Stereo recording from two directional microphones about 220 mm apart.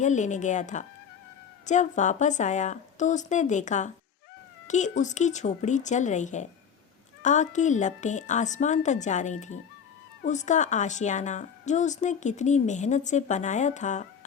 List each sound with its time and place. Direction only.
0.0 s a woman's voice: 35° left (ahead or behind)